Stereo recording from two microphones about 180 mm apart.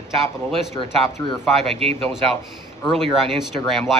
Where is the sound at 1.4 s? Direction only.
Centre (ahead or behind).